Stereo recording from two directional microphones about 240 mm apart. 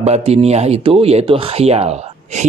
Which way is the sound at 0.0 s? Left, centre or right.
Right.